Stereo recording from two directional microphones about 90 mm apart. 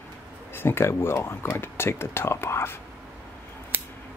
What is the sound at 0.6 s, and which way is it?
Speech, 25° left (ahead or behind).